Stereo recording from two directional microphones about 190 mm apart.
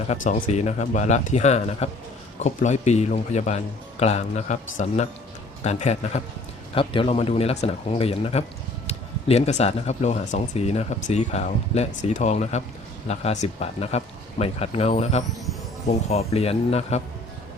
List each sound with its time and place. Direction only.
0.3 s speech: 35° left (ahead or behind)